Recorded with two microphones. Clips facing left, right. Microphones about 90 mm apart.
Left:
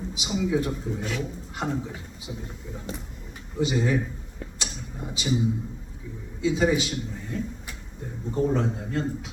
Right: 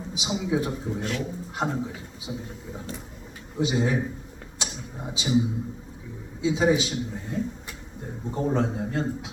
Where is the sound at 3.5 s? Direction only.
20° right (ahead or behind).